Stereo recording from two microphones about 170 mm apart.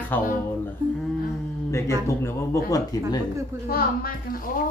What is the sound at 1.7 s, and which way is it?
Speech, 15° left (ahead or behind).